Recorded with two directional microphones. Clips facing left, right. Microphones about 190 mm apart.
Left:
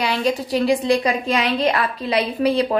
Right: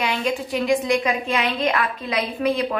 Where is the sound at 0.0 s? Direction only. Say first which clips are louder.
Left 3 dB; 35° left (ahead or behind).